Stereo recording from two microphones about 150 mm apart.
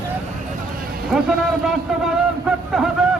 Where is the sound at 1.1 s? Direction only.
Centre (ahead or behind).